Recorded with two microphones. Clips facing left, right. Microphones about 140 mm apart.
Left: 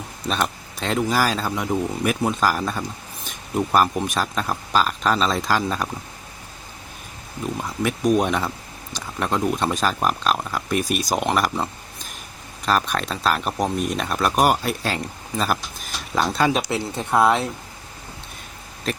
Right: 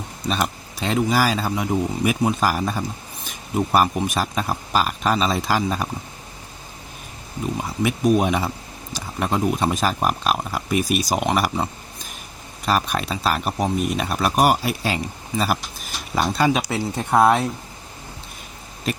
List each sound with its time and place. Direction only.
0.3 s speech: 5° right (ahead or behind)
7.8 s speech: 5° right (ahead or behind)
16.7 s speech: 15° right (ahead or behind)